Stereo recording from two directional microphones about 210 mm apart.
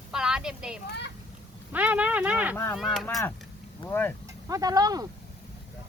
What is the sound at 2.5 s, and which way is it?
Speech, 10° left (ahead or behind).